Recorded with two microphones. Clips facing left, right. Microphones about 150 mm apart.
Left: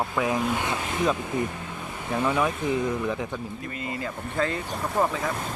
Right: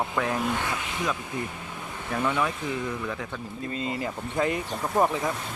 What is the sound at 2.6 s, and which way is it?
Speech, 50° left (ahead or behind).